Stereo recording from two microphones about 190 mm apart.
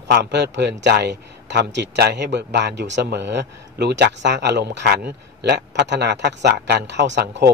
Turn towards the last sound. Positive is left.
turn(degrees=-65)  # may be behind; listen again after turning